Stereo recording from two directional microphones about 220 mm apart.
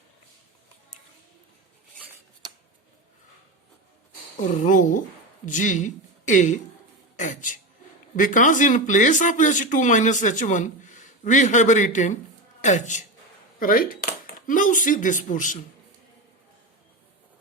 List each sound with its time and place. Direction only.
4.4 s speech: 35° left (ahead or behind)